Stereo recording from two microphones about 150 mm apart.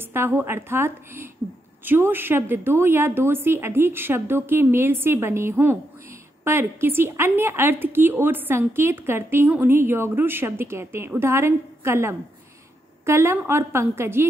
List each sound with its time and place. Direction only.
0.1 s a woman's voice: 15° right (ahead or behind)